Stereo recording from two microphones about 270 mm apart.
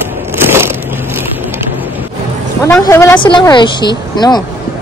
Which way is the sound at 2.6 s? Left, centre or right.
Centre.